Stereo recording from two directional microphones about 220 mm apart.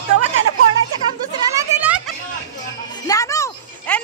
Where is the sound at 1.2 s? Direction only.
15° right (ahead or behind).